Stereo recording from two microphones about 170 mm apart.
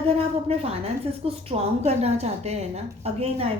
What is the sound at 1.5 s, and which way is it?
A woman's voice, 40° right (ahead or behind).